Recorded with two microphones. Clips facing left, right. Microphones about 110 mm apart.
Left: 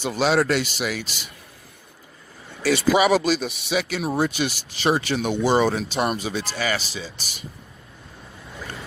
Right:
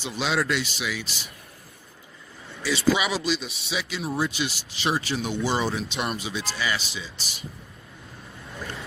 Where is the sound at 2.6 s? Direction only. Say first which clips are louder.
Left 3 dB; 55° left (ahead or behind).